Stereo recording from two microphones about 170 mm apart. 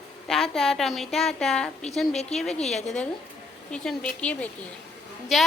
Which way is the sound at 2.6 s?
40° left (ahead or behind).